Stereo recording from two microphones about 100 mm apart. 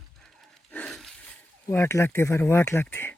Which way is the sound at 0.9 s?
5° left (ahead or behind).